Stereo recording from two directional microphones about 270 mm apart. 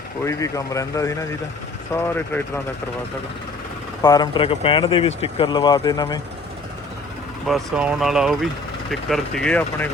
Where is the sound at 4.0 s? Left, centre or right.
Centre.